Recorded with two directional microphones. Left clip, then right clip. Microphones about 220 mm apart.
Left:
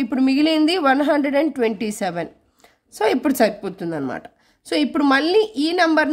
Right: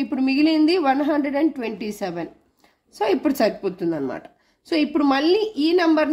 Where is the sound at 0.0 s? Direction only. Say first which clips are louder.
Left 2 dB; 35° left (ahead or behind).